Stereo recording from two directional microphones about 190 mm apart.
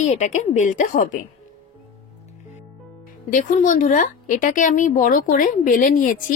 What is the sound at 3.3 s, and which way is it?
A woman's voice, 45° left (ahead or behind).